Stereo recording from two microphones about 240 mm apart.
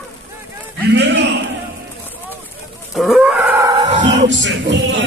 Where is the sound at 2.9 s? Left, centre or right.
Centre.